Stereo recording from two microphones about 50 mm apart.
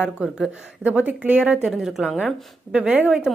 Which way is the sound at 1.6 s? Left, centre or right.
Centre.